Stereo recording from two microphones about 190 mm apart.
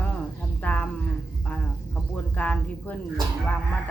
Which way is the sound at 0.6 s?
10° left (ahead or behind).